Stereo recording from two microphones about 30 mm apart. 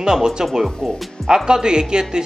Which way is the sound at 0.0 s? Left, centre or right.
Right.